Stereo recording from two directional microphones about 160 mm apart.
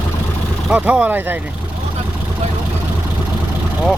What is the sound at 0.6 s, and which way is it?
Speech, 5° right (ahead or behind).